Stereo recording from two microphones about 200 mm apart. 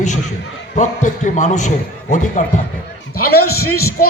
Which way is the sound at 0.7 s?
40° left (ahead or behind).